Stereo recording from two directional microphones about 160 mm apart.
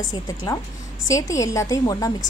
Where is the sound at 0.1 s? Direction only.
25° left (ahead or behind).